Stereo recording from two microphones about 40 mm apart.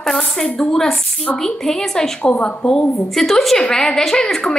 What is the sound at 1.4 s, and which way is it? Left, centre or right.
Speech, centre.